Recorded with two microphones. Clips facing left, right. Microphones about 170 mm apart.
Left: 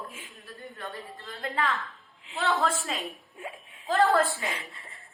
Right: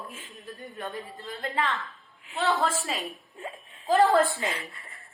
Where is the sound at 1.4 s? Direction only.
Centre (ahead or behind).